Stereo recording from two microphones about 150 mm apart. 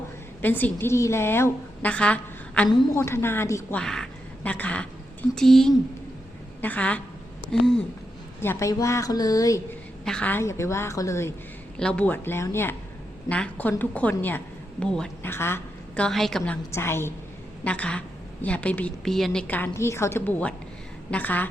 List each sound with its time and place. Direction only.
0.4 s a woman's voice: 10° left (ahead or behind)
3.8 s a woman's voice: 5° left (ahead or behind)
8.4 s a woman's voice: 20° left (ahead or behind)
10.0 s a woman's voice: 5° left (ahead or behind)
11.8 s a woman's voice: 5° left (ahead or behind)
15.3 s a woman's voice: 15° left (ahead or behind)
16.0 s a woman's voice: centre (ahead or behind)
16.7 s a woman's voice: 15° left (ahead or behind)